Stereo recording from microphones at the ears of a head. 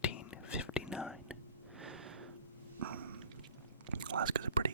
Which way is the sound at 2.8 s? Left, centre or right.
Right.